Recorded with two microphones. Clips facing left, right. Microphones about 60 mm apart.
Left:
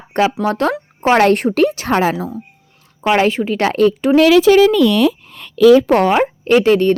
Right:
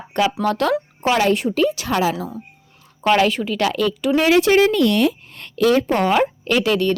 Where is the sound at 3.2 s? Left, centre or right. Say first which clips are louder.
Left 3 dB; left.